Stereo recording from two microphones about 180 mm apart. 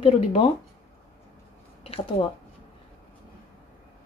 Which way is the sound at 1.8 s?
30° left (ahead or behind).